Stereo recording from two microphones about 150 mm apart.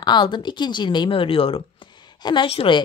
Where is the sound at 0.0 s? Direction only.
30° left (ahead or behind).